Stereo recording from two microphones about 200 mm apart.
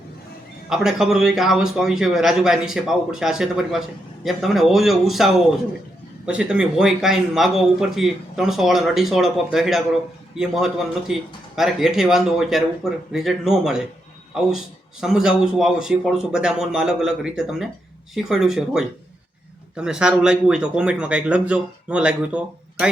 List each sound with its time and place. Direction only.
0.7 s a man's voice: 5° right (ahead or behind)
15.0 s a man's voice: 5° right (ahead or behind)